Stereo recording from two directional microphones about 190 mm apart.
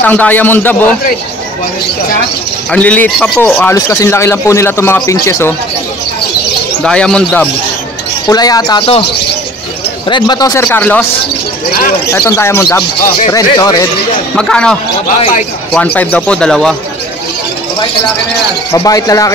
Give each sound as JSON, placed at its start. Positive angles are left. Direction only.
{"t": 0.0, "sound": "a man's voice", "side_deg": 10}
{"t": 2.7, "sound": "a man's voice", "side_deg": 5}
{"t": 6.8, "sound": "speech", "side_deg": 5}
{"t": 8.3, "sound": "speech", "side_deg": 20}
{"t": 10.0, "sound": "a man's voice", "side_deg": 25}
{"t": 12.1, "sound": "a man's voice", "side_deg": 15}
{"t": 14.3, "sound": "speech", "side_deg": 5}
{"t": 15.0, "sound": "speech", "side_deg": 45}
{"t": 15.7, "sound": "speech", "side_deg": 5}
{"t": 18.7, "sound": "a man's voice", "side_deg": 15}